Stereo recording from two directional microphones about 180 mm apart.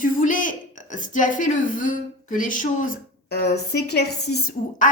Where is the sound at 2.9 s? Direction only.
65° left (ahead or behind).